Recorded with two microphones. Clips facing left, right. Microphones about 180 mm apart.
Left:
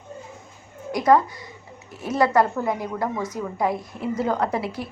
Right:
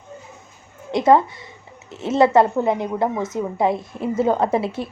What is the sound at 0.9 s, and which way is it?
A woman's voice, 25° right (ahead or behind).